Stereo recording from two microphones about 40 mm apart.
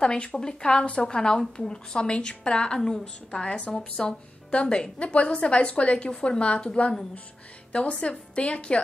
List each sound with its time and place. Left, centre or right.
0.0 s a woman's voice: left